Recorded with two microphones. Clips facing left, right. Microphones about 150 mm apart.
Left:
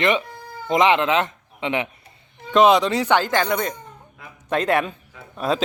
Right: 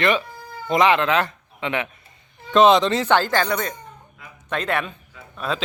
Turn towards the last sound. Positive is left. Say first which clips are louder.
# left 4 dB
turn(degrees=35)  # may be behind; listen again after turning